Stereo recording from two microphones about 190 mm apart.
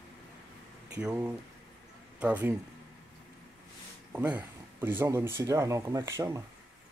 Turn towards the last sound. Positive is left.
turn(degrees=-15)  # may be behind; listen again after turning